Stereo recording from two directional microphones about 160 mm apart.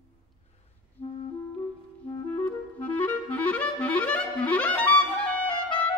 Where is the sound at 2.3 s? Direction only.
10° left (ahead or behind).